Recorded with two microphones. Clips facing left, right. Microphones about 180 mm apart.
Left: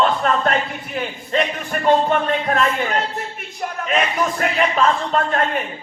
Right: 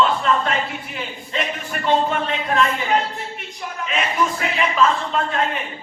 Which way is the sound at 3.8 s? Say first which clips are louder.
Left 1 dB; 45° left (ahead or behind).